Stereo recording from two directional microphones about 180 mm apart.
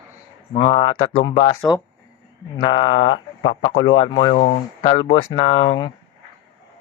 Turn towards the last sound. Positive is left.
turn(degrees=25)  # may be behind; listen again after turning